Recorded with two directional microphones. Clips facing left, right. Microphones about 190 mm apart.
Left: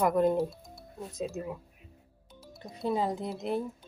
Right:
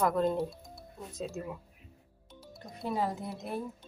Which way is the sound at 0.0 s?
15° left (ahead or behind).